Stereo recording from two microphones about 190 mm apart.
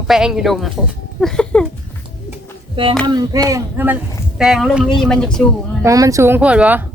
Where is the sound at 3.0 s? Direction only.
20° right (ahead or behind).